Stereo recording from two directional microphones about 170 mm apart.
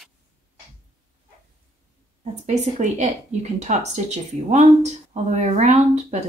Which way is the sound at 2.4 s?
45° right (ahead or behind).